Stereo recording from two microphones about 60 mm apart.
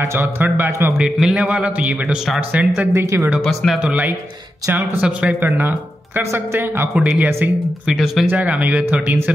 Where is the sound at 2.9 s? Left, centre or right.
Right.